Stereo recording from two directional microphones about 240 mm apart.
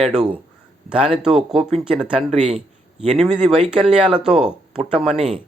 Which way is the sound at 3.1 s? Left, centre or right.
Centre.